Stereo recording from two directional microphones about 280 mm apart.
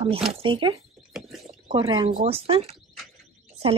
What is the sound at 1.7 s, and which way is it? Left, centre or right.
Speech, centre.